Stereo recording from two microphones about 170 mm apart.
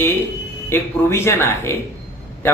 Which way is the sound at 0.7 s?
15° left (ahead or behind).